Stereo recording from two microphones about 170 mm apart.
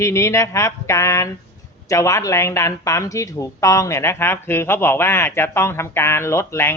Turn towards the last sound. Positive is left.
turn(degrees=15)  # may be behind; listen again after turning